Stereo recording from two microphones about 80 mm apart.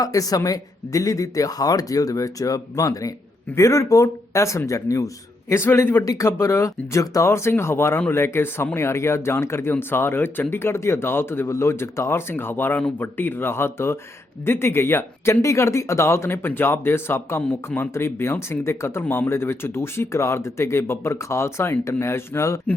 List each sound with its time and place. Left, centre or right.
0.0 s speech: left